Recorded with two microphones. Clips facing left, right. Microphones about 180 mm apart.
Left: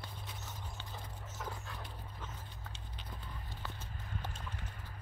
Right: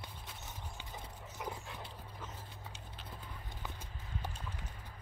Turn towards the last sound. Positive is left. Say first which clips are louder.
# even
turn(degrees=-10)  # may be behind; listen again after turning